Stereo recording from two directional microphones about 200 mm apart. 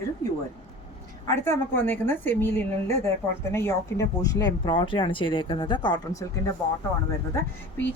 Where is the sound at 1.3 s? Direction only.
10° left (ahead or behind).